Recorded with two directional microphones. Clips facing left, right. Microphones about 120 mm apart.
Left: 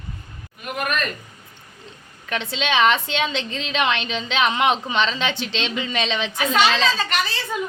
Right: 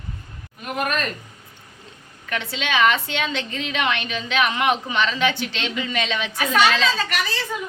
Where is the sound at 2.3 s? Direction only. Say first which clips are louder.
Left 1 dB; 25° left (ahead or behind).